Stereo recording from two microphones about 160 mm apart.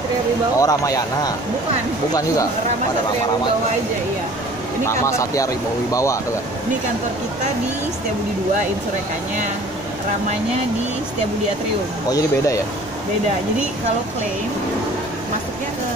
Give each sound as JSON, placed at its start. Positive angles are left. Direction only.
{"t": 0.6, "sound": "speech", "side_deg": 20}
{"t": 4.8, "sound": "speech", "side_deg": 20}
{"t": 12.1, "sound": "speech", "side_deg": 20}